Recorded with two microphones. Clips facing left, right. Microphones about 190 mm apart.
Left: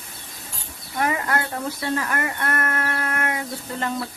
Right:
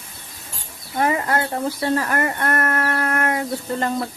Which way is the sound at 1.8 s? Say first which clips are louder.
Right 4 dB; 40° right (ahead or behind).